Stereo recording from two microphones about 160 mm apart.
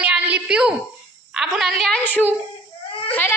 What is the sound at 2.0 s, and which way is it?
Speech, 10° left (ahead or behind).